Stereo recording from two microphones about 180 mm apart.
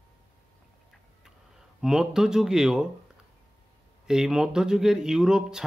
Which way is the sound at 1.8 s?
5° right (ahead or behind).